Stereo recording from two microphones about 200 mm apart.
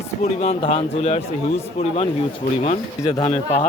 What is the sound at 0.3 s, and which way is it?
Speech, 30° left (ahead or behind).